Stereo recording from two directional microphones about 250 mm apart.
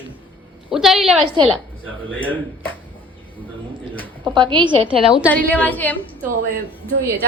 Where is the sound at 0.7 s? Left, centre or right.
Centre.